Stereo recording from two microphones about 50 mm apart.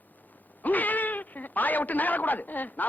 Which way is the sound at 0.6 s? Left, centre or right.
Left.